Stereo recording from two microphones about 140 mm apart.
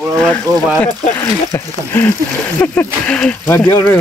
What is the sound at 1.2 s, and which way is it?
Speech, 15° left (ahead or behind).